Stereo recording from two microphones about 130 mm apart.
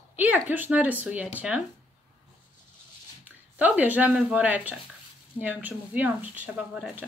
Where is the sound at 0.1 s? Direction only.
15° right (ahead or behind).